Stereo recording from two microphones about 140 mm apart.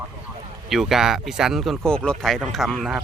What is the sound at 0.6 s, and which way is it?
Speech, 5° right (ahead or behind).